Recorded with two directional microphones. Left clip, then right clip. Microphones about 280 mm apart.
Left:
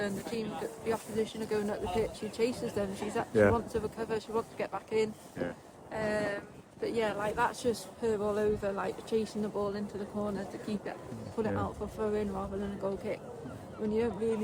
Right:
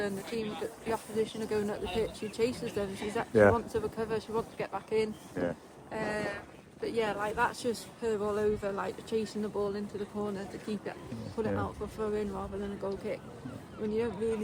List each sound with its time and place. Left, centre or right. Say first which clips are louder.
0.0 s speech: right 1 dB; centre
5.4 s speech: right 4 dB; centre
5.9 s a sound: left 2 dB; centre
6.8 s speech: even; centre